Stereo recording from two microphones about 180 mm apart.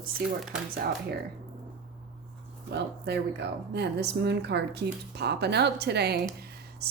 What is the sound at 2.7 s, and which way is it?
Speech, 70° right (ahead or behind).